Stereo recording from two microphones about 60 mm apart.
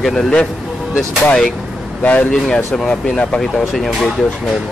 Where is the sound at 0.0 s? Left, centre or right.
Centre.